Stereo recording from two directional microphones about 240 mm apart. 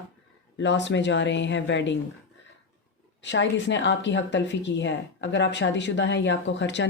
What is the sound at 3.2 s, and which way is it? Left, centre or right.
Speech, left.